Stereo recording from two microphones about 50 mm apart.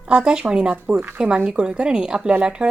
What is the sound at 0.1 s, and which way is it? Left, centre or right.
A woman's voice, centre.